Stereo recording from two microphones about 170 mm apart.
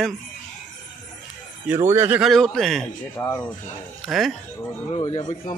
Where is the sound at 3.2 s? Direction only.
20° left (ahead or behind).